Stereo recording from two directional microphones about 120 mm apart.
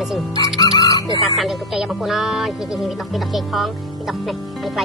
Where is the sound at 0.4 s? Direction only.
30° left (ahead or behind).